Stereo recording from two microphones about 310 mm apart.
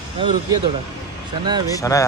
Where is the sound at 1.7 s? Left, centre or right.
Centre.